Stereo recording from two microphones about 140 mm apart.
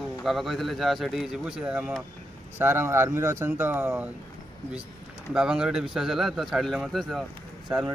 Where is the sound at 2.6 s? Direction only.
15° right (ahead or behind).